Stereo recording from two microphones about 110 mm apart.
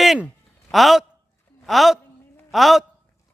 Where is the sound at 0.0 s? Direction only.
Centre (ahead or behind).